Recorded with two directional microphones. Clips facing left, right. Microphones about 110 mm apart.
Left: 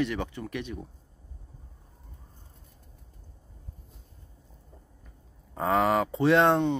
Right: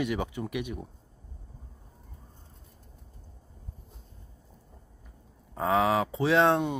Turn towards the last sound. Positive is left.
turn(degrees=0)  # may be behind; listen again after turning